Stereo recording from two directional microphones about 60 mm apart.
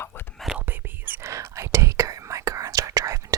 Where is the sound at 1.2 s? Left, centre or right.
Right.